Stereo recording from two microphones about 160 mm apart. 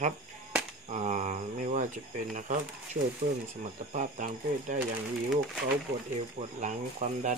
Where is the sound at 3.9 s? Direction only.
50° right (ahead or behind).